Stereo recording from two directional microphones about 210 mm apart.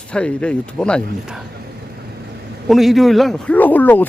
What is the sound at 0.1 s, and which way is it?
A man's voice, 5° left (ahead or behind).